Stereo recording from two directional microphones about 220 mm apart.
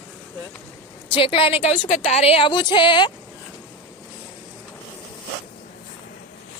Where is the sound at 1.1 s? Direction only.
25° left (ahead or behind).